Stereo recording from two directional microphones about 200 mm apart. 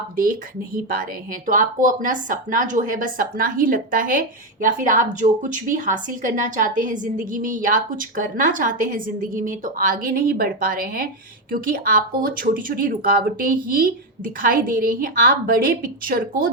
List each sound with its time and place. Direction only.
0.2 s a woman's voice: 45° right (ahead or behind)